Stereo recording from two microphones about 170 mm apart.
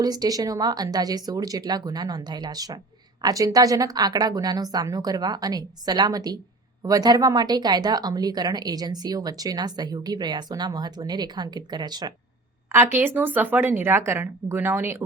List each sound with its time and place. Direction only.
0.0 s speech: 20° right (ahead or behind)
12.7 s a woman's voice: 10° right (ahead or behind)